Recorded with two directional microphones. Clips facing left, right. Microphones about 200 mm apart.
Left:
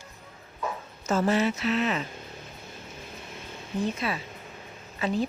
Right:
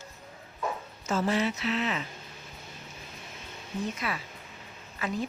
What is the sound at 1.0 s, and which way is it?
Speech, 45° left (ahead or behind).